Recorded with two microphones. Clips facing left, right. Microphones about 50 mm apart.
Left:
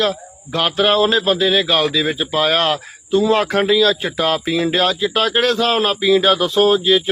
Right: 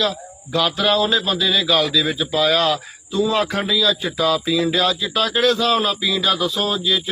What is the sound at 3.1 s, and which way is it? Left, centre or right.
A man's voice, left.